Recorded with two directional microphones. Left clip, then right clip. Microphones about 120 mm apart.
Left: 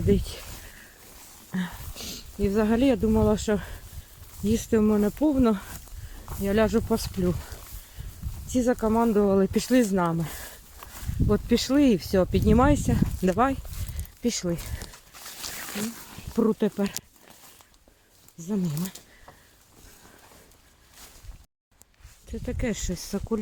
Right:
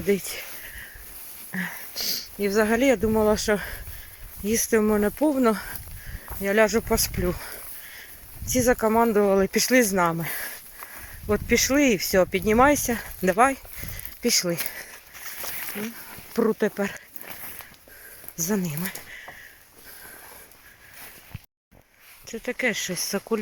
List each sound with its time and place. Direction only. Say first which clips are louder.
1.5 s speech: right 5 dB; 30° left (ahead or behind)
3.0 s speech: right 2 dB; 20° left (ahead or behind)
4.9 s speech: right 2 dB; 5° left (ahead or behind)
5.2 s speech: right 2 dB; 20° left (ahead or behind)
7.3 s speech: right 1 dB; 10° left (ahead or behind)
8.4 s speech: right 3 dB; 25° left (ahead or behind)
8.7 s speech: right 3 dB; 15° left (ahead or behind)
9.2 s speech: right 2 dB; 30° left (ahead or behind)
11.4 s speech: right 3 dB; 35° left (ahead or behind)
14.2 s speech: right 5 dB; 15° left (ahead or behind)
15.6 s a sound: even; 35° left (ahead or behind)
16.3 s speech: right 2 dB; 25° left (ahead or behind)
18.3 s speech: right 5 dB; 20° left (ahead or behind)
22.3 s speech: right 6 dB; 5° left (ahead or behind)